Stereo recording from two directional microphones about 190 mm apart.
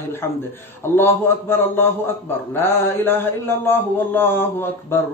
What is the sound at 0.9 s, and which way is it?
A man's voice, 10° left (ahead or behind).